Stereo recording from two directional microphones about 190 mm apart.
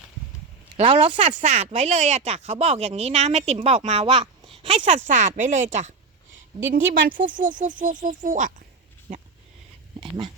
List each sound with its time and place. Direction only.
0.8 s speech: 25° right (ahead or behind)
1.4 s speech: 35° right (ahead or behind)
10.0 s dog: 25° right (ahead or behind)